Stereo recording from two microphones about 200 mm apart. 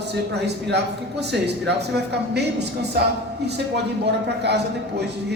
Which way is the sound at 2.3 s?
55° right (ahead or behind).